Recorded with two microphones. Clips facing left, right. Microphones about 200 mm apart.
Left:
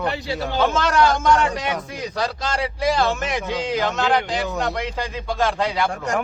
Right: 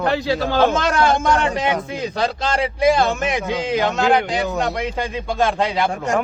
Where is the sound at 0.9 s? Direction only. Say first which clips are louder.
Even; 25° right (ahead or behind).